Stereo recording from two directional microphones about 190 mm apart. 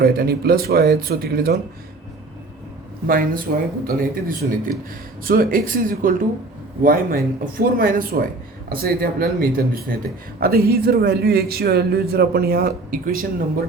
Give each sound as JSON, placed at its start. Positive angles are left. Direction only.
{"t": 0.0, "sound": "speech", "side_deg": -55}
{"t": 3.1, "sound": "a man's voice", "side_deg": -50}